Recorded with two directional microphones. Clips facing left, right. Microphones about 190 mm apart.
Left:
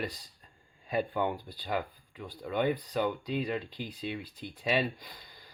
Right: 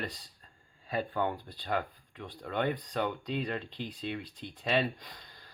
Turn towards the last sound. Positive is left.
turn(degrees=10)  # may be behind; listen again after turning